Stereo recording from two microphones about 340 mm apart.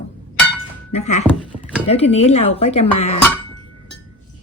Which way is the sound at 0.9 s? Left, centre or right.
Centre.